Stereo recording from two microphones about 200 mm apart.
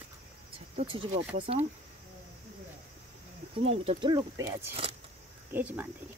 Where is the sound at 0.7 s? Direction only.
25° right (ahead or behind).